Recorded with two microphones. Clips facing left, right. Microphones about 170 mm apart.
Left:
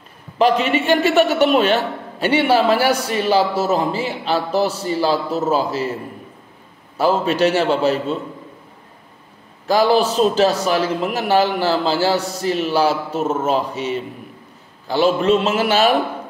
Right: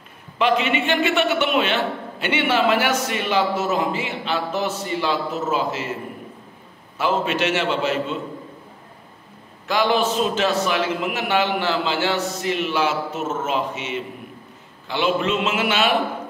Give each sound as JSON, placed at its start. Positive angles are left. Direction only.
{"t": 0.4, "sound": "a man's voice", "side_deg": 40}
{"t": 7.0, "sound": "a man's voice", "side_deg": 35}
{"t": 9.7, "sound": "a man's voice", "side_deg": 35}